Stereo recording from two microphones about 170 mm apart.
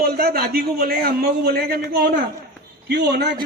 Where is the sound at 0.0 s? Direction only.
65° right (ahead or behind).